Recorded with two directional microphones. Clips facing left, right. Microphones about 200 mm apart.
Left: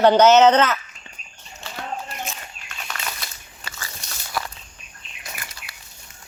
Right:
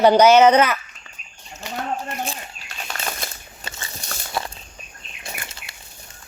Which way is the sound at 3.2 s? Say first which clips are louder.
Right 6 dB; 50° right (ahead or behind).